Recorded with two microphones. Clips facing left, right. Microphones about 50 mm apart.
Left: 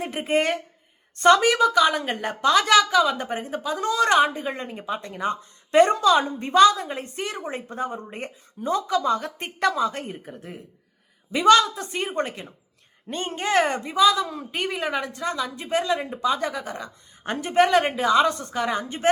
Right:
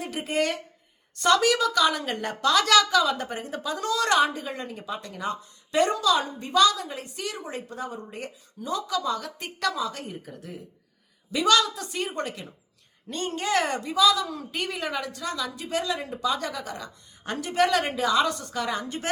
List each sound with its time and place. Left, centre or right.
0.0 s a woman's voice: left